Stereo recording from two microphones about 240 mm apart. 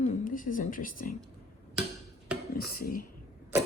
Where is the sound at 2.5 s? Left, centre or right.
Left.